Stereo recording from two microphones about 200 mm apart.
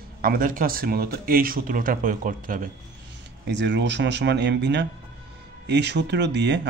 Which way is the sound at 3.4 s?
60° right (ahead or behind).